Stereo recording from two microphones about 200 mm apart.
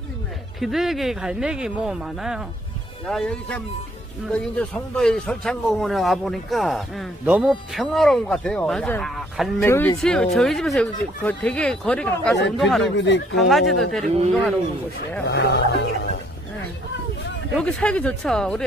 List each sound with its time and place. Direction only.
0.6 s a man's voice: centre (ahead or behind)
9.6 s a man's voice: 10° left (ahead or behind)
12.9 s speech: 60° left (ahead or behind)
13.4 s a man's voice: centre (ahead or behind)
15.2 s speech: 55° left (ahead or behind)
17.6 s a man's voice: 5° left (ahead or behind)